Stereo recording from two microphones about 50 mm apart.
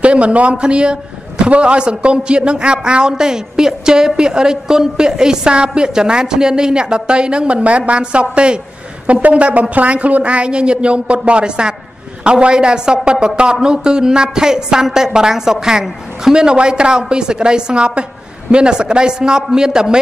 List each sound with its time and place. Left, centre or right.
0.0 s a man's voice: right